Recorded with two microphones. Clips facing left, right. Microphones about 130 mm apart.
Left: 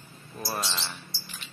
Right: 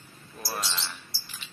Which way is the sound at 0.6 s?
25° left (ahead or behind).